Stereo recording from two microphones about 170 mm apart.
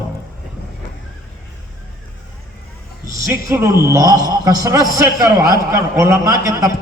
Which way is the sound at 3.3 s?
15° right (ahead or behind).